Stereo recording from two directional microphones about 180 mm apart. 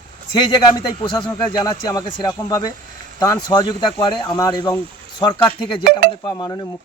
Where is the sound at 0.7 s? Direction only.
25° left (ahead or behind).